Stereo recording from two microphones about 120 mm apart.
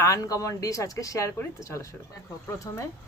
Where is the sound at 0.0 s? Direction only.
30° left (ahead or behind).